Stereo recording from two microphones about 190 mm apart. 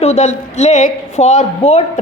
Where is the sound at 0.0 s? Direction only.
35° left (ahead or behind).